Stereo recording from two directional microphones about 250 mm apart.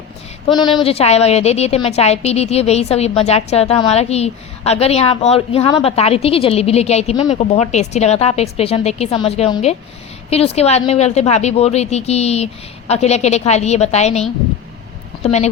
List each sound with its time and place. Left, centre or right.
0.4 s a woman's voice: centre